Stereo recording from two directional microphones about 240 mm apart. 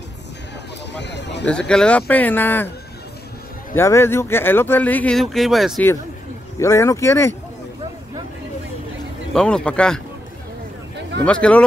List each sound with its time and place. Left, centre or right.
0.9 s a sound: left
1.4 s speech: centre
3.7 s speech: centre
9.3 s speech: centre
11.2 s speech: centre